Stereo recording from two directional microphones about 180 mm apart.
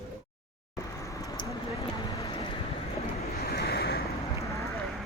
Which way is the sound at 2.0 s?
25° left (ahead or behind).